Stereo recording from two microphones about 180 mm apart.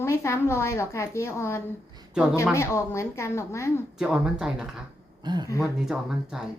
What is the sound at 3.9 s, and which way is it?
Speech, 5° right (ahead or behind).